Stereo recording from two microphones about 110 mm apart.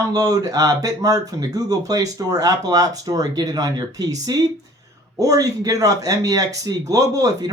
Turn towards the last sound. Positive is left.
turn(degrees=-30)  # may be behind; listen again after turning